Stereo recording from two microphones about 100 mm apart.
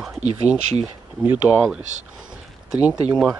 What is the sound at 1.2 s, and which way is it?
Speech, 20° right (ahead or behind).